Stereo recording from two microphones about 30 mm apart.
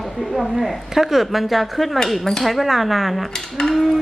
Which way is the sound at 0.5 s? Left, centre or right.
Centre.